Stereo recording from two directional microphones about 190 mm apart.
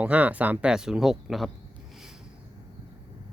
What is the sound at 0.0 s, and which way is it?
Speech, 10° right (ahead or behind).